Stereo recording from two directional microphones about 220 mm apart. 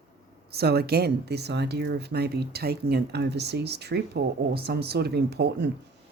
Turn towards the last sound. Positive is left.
turn(degrees=-50)  # may be behind; listen again after turning